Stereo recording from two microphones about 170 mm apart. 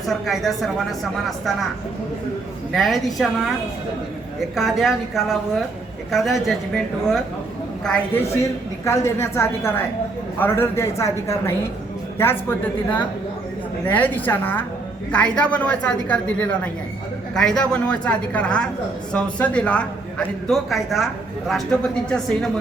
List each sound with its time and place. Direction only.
0.0 s a man's voice: centre (ahead or behind)
2.7 s a man's voice: centre (ahead or behind)
7.9 s a woman's voice: 15° left (ahead or behind)